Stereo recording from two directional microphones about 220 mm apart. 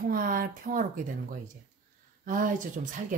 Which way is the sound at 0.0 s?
40° right (ahead or behind).